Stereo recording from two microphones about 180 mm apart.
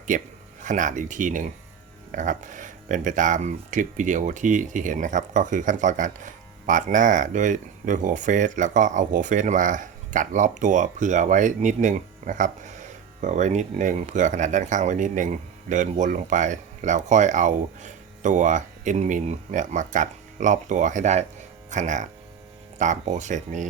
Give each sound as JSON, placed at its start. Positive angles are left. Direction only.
{"t": 0.1, "sound": "speech", "side_deg": -45}